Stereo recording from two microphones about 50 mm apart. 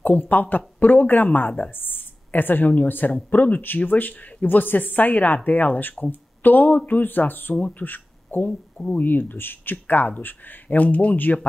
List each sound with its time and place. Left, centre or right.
0.0 s a woman's voice: left
7.8 s a sound: left
8.5 s speech: centre
8.9 s a woman's voice: left